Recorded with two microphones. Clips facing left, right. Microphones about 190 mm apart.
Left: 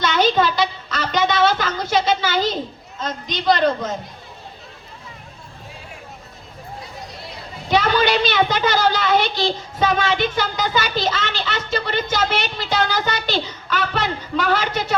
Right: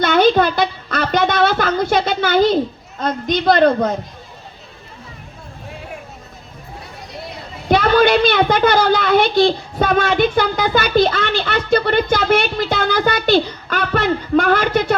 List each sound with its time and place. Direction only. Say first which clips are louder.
0.0 s a sound: right 5 dB; 50° right (ahead or behind)
3.0 s a woman's voice: right 7 dB; 50° right (ahead or behind)
7.7 s a woman's voice: right 5 dB; 50° right (ahead or behind)